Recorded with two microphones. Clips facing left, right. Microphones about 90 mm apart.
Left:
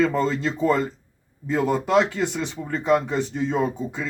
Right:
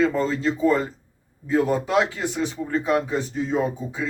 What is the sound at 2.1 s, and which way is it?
Speech, 60° left (ahead or behind).